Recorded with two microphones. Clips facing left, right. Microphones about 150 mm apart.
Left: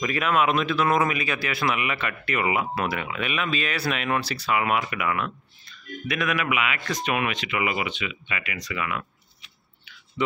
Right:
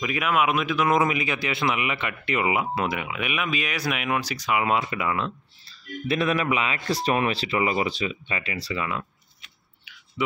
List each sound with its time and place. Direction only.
0.0 s a man's voice: 10° right (ahead or behind); by 9.0 s 30° right (ahead or behind)
10.2 s speech: 10° right (ahead or behind)